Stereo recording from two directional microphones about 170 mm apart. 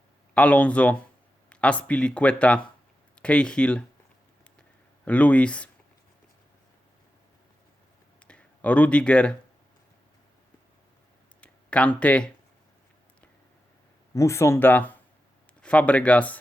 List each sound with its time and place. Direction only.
0.3 s speech: 10° left (ahead or behind)
5.0 s speech: 10° left (ahead or behind)
8.3 s speech: 5° left (ahead or behind)
11.3 s a sound: 5° left (ahead or behind)
14.1 s speech: 15° left (ahead or behind)